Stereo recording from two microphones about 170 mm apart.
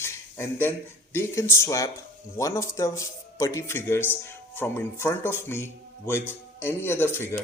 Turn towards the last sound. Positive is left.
turn(degrees=15)  # may be behind; listen again after turning